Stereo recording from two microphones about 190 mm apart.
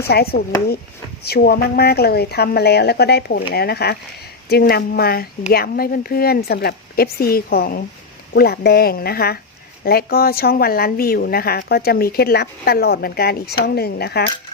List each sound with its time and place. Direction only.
0.0 s a woman's voice: 55° left (ahead or behind)